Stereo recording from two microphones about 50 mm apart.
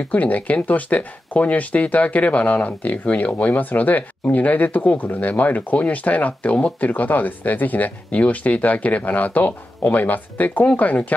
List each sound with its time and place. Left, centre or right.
0.1 s speech: left